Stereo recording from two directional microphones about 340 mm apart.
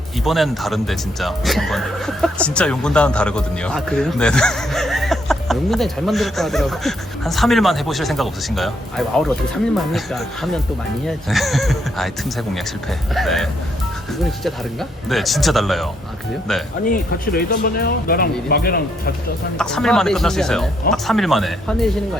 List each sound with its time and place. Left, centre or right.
0.3 s speech: centre
16.8 s speech: left
19.5 s speech: centre